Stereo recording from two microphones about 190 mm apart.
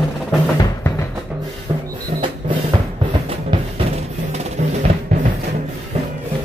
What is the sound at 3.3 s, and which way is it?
Music, 30° right (ahead or behind).